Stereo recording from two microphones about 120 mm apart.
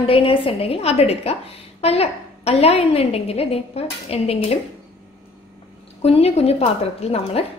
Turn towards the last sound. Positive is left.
turn(degrees=55)  # may be behind; listen again after turning